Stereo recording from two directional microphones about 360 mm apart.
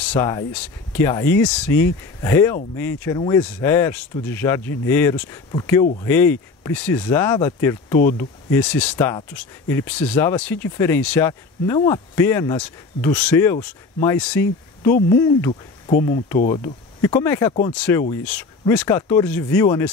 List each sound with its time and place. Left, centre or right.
0.1 s speech: centre
14.9 s speech: left
15.1 s speech: centre
15.9 s speech: centre